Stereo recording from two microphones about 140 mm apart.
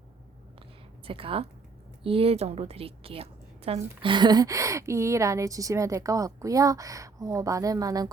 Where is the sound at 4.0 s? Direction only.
35° right (ahead or behind).